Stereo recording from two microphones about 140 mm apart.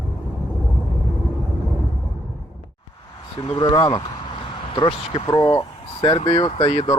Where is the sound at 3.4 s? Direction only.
30° left (ahead or behind).